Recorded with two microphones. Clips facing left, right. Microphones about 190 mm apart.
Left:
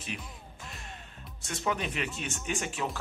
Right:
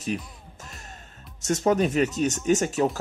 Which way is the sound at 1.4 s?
40° right (ahead or behind).